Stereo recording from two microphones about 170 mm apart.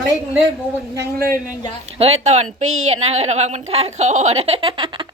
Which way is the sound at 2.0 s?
40° right (ahead or behind).